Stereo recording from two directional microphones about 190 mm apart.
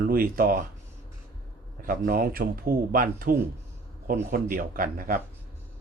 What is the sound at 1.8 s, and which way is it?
Speech, 50° right (ahead or behind).